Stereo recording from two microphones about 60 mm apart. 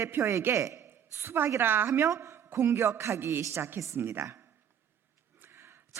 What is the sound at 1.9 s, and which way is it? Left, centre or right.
A man's voice, right.